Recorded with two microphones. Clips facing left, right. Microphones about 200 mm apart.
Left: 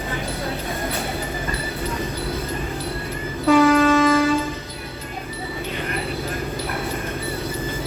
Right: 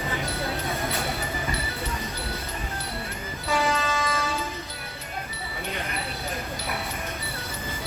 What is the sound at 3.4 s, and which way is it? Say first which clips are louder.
Train: left 12 dB; 55° left (ahead or behind).